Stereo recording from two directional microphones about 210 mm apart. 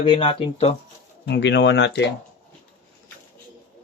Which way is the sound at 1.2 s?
55° left (ahead or behind).